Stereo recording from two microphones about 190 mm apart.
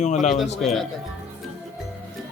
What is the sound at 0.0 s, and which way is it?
Speech, 40° left (ahead or behind).